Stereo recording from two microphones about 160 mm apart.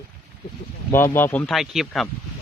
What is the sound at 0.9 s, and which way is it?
Speech, 15° left (ahead or behind).